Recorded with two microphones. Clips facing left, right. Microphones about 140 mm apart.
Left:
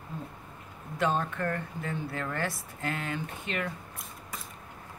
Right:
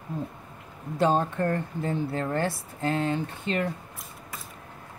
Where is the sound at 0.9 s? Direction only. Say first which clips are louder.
Right 5 dB; 30° right (ahead or behind).